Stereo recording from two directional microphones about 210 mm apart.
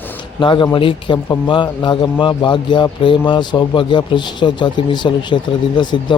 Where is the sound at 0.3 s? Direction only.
20° left (ahead or behind).